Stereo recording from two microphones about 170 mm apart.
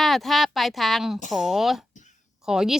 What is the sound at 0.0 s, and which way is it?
Speech, centre (ahead or behind).